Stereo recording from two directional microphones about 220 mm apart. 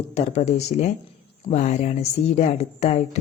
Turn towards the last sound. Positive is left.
turn(degrees=30)  # may be behind; listen again after turning